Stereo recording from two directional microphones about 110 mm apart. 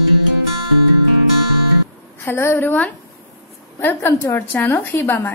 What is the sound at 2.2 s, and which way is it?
A woman's voice, 20° left (ahead or behind).